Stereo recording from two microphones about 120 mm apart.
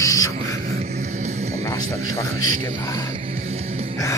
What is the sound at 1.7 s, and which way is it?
Speech, 30° left (ahead or behind).